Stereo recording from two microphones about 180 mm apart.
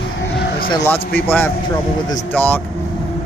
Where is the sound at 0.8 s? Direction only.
10° left (ahead or behind).